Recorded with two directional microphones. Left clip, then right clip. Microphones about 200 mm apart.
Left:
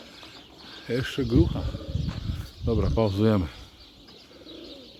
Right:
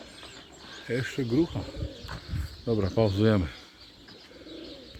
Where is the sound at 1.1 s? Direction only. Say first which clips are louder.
Left 3 dB; 30° left (ahead or behind).